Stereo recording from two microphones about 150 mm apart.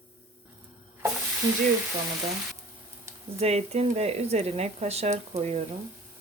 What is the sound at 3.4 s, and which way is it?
Speech, 45° right (ahead or behind).